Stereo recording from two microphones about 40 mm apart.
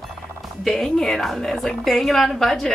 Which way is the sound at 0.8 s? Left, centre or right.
Centre.